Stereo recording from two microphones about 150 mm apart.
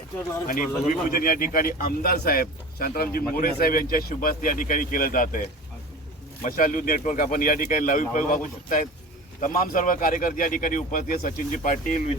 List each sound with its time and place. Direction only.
0.9 s speech: 70° left (ahead or behind)
6.4 s speech: 65° left (ahead or behind)